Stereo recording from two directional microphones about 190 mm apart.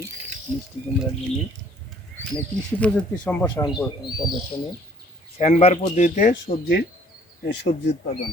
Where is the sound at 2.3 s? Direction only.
5° left (ahead or behind).